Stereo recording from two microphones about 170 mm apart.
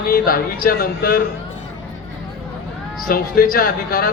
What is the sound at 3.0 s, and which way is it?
A man's voice, 60° left (ahead or behind).